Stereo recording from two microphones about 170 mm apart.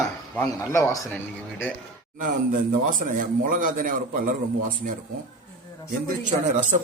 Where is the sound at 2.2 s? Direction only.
55° right (ahead or behind).